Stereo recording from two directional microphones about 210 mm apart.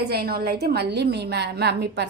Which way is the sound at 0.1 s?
50° right (ahead or behind).